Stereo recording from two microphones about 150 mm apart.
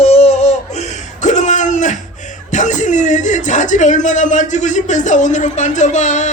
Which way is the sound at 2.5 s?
55° left (ahead or behind).